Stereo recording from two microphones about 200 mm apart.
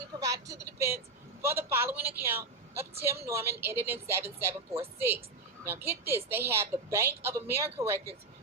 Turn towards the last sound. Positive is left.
turn(degrees=-10)  # may be behind; listen again after turning